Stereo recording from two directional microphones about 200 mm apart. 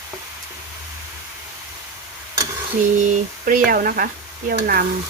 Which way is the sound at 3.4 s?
45° right (ahead or behind).